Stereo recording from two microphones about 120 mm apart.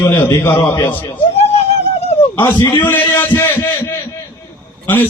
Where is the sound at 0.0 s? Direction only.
35° left (ahead or behind).